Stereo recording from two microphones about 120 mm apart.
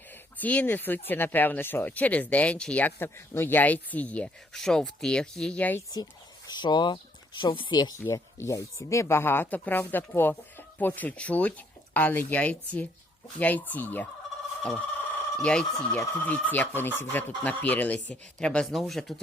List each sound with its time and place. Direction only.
0.1 s speech: 15° left (ahead or behind)
6.5 s speech: 40° left (ahead or behind)
7.9 s speech: 25° left (ahead or behind)
15.4 s speech: 10° left (ahead or behind)